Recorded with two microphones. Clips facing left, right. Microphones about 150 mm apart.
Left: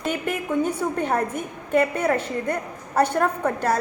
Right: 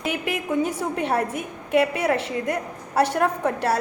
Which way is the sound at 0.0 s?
5° right (ahead or behind).